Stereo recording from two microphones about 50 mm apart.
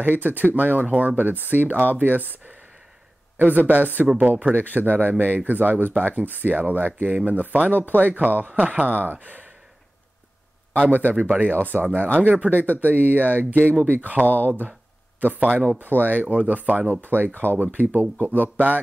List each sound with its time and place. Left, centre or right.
0.0 s speech: right
3.3 s speech: right
10.8 s speech: right
14.2 s speech: left
15.1 s speech: right
17.6 s speech: right